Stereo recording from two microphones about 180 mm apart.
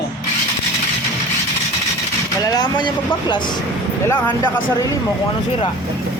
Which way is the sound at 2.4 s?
20° left (ahead or behind).